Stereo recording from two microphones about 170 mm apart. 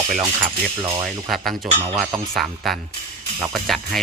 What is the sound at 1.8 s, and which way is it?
Speech, 20° right (ahead or behind).